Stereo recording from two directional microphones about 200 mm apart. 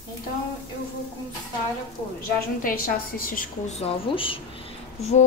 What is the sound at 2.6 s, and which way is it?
A woman's voice, 45° left (ahead or behind).